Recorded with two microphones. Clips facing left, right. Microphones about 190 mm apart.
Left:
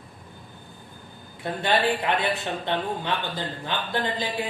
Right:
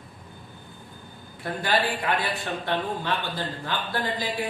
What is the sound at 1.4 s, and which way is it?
Speech, 25° left (ahead or behind).